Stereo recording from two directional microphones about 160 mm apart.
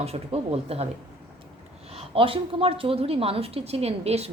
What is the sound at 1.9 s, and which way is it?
A woman's voice, 35° right (ahead or behind).